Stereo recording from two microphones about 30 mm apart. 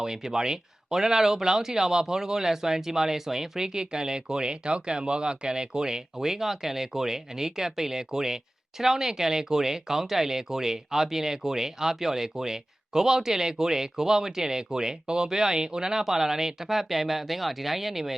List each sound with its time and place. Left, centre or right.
0.0 s speech: centre
16.0 s speech: centre